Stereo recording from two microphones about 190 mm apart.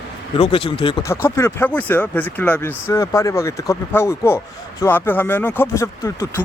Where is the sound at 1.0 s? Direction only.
15° left (ahead or behind).